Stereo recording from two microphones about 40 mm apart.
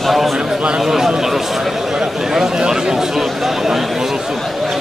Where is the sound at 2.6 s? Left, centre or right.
Centre.